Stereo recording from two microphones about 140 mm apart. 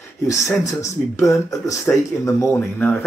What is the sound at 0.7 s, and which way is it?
Speech, 20° left (ahead or behind).